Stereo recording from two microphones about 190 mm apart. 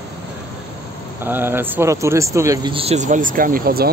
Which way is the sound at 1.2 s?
10° right (ahead or behind).